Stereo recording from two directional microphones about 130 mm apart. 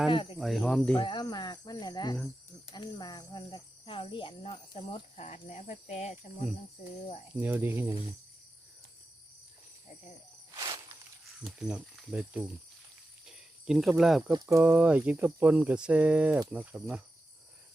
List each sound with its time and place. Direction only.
0.1 s speech: 40° left (ahead or behind)
0.3 s speech: centre (ahead or behind)
0.9 s speech: 35° left (ahead or behind)
3.8 s speech: 40° left (ahead or behind)
5.1 s speech: 55° left (ahead or behind)
7.3 s speech: 15° right (ahead or behind)
10.5 s walk: 35° right (ahead or behind)
11.3 s speech: centre (ahead or behind)
14.3 s speech: 25° right (ahead or behind)
14.6 s speech: 10° right (ahead or behind)